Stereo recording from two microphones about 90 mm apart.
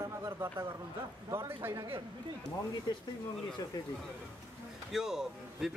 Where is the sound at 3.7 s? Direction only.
50° left (ahead or behind).